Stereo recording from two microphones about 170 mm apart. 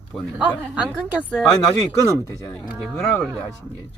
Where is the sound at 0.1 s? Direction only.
Centre (ahead or behind).